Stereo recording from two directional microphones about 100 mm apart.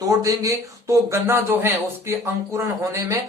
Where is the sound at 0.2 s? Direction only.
35° right (ahead or behind).